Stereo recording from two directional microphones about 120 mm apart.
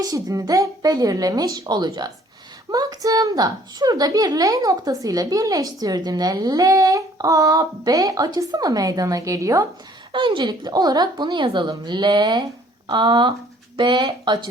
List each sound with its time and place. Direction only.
0.0 s a woman's voice: 30° right (ahead or behind)
10.1 s a woman's voice: 45° right (ahead or behind)